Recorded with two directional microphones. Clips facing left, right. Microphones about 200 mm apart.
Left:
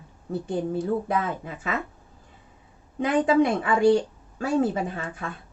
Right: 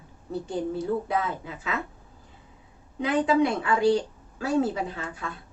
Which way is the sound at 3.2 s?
50° left (ahead or behind).